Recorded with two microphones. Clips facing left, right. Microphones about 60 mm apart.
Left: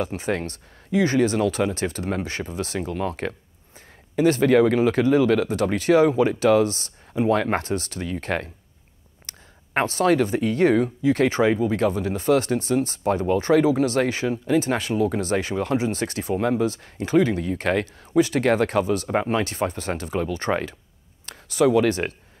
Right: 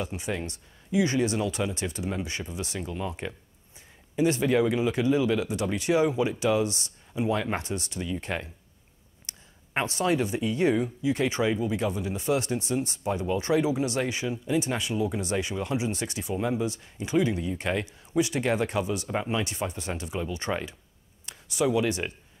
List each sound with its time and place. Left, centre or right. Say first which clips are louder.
0.0 s speech: left 6 dB; left
9.3 s a sound: left 3 dB; left
9.9 s speech: left 6 dB; left